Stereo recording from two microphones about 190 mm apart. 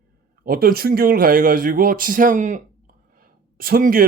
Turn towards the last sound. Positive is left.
turn(degrees=-50)  # may be behind; listen again after turning